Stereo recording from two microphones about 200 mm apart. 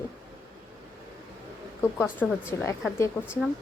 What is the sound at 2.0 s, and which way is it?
Speech, 5° right (ahead or behind).